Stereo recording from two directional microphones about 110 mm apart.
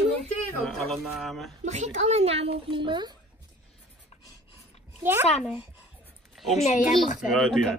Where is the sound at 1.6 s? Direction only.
90° right; by 3.2 s 45° right (ahead or behind).